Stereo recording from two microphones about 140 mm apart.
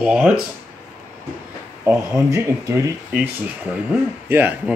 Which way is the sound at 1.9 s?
25° right (ahead or behind).